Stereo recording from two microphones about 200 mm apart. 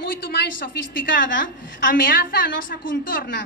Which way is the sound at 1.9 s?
45° left (ahead or behind).